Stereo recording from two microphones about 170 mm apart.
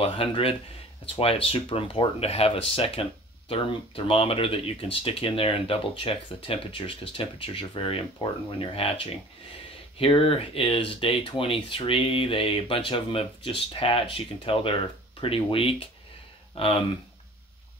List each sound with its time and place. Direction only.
0.0 s speech: 35° left (ahead or behind)